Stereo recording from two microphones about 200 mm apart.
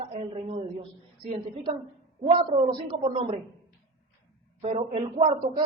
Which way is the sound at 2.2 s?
30° right (ahead or behind).